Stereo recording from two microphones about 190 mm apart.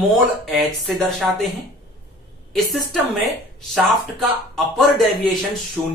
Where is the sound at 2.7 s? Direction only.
Centre (ahead or behind).